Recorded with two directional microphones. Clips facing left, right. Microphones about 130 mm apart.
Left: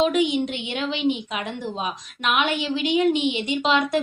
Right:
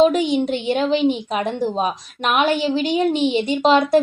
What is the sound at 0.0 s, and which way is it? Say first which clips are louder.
A woman's voice: right 5 dB; 35° right (ahead or behind).